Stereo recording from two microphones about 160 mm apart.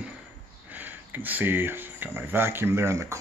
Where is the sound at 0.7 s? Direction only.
10° right (ahead or behind).